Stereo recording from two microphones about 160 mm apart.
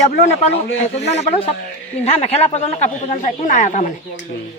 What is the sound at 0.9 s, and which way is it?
Speech, 45° left (ahead or behind).